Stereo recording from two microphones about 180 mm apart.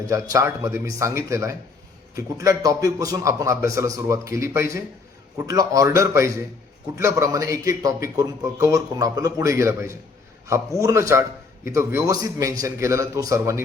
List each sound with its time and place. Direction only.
0.1 s a man's voice: 15° right (ahead or behind)